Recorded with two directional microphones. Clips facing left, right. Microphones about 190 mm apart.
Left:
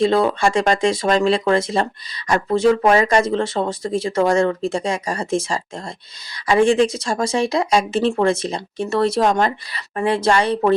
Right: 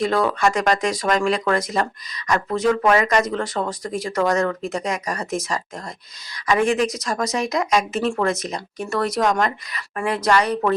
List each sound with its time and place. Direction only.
0.0 s speech: 25° left (ahead or behind)